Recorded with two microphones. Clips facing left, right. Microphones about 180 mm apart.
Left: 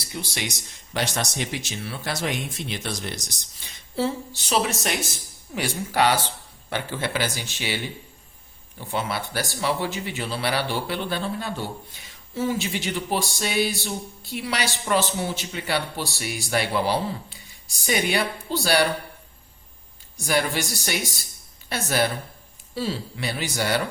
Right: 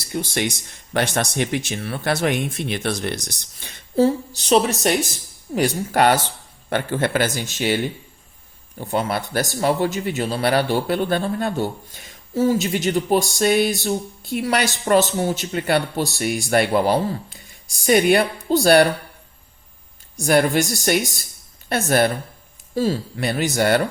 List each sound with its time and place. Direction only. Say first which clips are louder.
0.0 s speech: right 8 dB; 50° right (ahead or behind)
3.9 s a woman's voice: right 8 dB; 40° right (ahead or behind)
8.8 s speech: right 5 dB; 45° right (ahead or behind)
20.1 s speech: right 7 dB; 50° right (ahead or behind)